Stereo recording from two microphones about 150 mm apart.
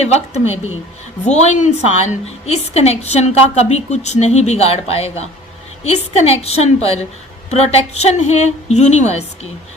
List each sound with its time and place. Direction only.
0.0 s a woman's voice: 45° left (ahead or behind)